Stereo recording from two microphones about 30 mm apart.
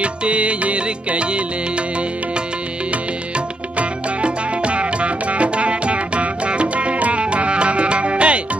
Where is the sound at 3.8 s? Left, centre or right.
Right.